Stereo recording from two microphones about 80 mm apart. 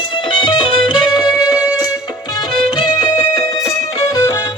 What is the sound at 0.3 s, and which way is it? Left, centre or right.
Music, left.